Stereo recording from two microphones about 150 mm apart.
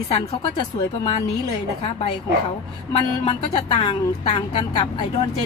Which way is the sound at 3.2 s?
40° left (ahead or behind).